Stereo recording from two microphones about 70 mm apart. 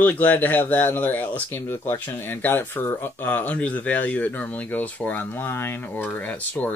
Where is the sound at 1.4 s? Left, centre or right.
Left.